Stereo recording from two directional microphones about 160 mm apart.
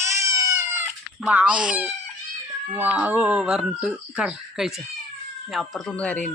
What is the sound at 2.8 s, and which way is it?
Speech, 10° right (ahead or behind).